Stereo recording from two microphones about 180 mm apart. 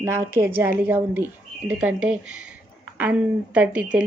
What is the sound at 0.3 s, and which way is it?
A woman's voice, 15° right (ahead or behind).